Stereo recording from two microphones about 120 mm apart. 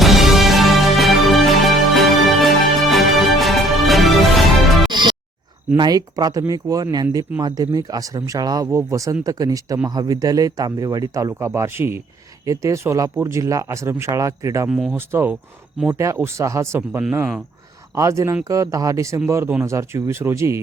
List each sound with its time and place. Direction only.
0.0 s music: centre (ahead or behind)
4.9 s music: 40° right (ahead or behind)
5.7 s speech: 35° right (ahead or behind)
14.7 s speech: centre (ahead or behind)
14.9 s speech: 20° right (ahead or behind)